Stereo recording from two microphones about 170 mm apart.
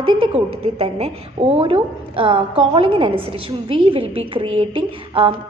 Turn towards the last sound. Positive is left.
turn(degrees=-30)  # may be behind; listen again after turning